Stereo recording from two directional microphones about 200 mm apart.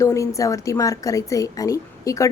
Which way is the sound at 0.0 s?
15° left (ahead or behind).